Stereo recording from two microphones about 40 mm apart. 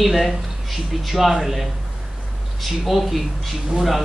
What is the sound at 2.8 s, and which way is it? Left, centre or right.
Speech, centre.